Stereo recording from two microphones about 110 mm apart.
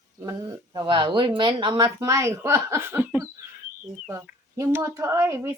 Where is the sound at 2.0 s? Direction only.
25° right (ahead or behind).